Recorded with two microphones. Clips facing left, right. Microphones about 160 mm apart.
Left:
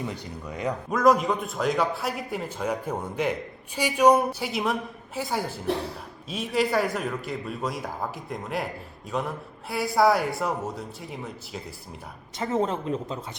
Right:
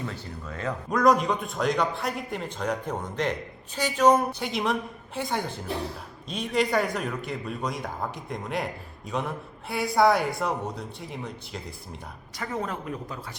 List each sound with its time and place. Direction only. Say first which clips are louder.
0.0 s speech: left 2 dB; 15° left (ahead or behind)
0.9 s a man's voice: even; centre (ahead or behind)
12.4 s speech: left 6 dB; 25° left (ahead or behind)